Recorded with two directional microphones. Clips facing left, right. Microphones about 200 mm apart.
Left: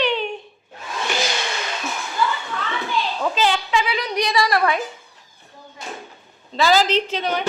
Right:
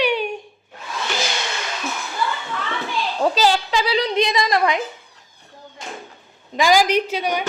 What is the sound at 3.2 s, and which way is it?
A woman's voice, 40° right (ahead or behind).